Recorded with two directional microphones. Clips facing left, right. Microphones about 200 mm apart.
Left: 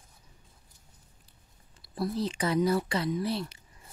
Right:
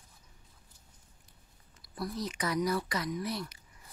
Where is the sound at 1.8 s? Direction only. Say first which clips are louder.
Left 6 dB; 25° left (ahead or behind).